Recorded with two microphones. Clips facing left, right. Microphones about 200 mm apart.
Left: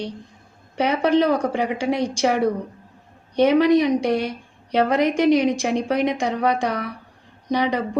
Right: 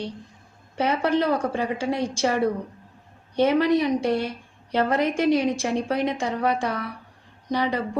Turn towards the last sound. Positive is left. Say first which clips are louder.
# left 3 dB
turn(degrees=15)  # may be behind; listen again after turning